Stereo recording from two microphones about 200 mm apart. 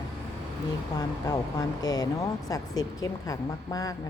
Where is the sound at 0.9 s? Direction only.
20° left (ahead or behind).